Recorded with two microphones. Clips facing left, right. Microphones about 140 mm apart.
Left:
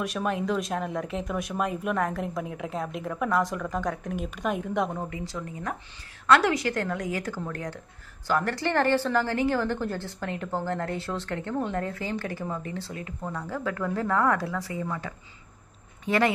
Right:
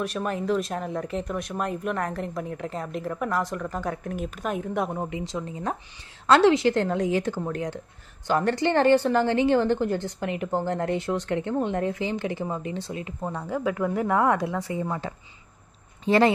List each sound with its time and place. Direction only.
0.0 s speech: centre (ahead or behind)
4.9 s a woman's voice: 20° right (ahead or behind)